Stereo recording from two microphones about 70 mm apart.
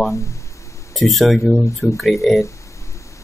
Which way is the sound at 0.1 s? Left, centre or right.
Left.